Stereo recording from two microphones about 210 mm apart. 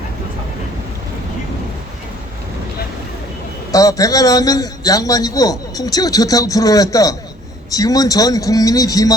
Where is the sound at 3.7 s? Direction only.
15° left (ahead or behind).